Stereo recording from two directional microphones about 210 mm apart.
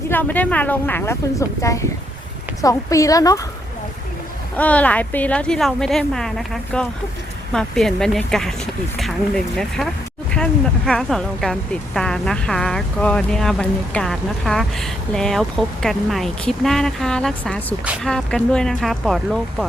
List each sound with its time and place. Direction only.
0.1 s speech: 10° left (ahead or behind)
4.5 s speech: 5° left (ahead or behind)
9.6 s speech: centre (ahead or behind)